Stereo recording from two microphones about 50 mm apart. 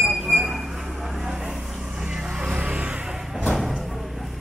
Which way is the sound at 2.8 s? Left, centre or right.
Right.